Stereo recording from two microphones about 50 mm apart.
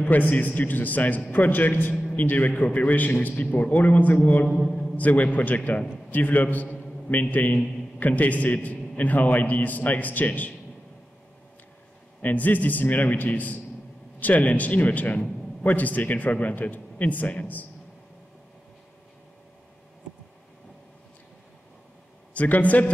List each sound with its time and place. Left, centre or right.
0.0 s a man's voice: left
4.5 s a man's voice: centre
4.9 s a man's voice: left
12.2 s a man's voice: left
22.3 s a man's voice: left